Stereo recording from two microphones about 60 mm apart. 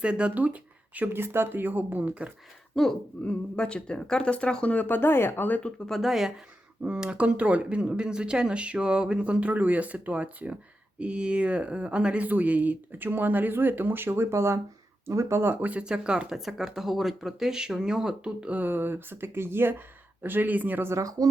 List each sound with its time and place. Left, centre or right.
0.0 s speech: centre
1.1 s speech: right
2.8 s speech: centre
3.2 s speech: centre; by 5.5 s left
5.5 s speech: left
5.9 s speech: centre
6.8 s speech: centre; by 15.5 s right
15.8 s speech: centre
18.7 s speech: right
20.9 s speech: right